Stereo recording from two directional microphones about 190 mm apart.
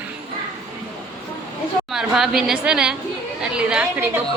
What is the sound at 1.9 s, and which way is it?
A woman's voice, centre (ahead or behind).